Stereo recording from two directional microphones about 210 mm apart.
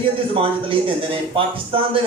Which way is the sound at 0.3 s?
25° right (ahead or behind).